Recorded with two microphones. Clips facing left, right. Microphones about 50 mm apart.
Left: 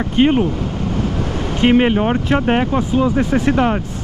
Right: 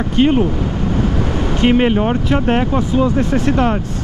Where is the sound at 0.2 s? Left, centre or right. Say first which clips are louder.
Even; centre.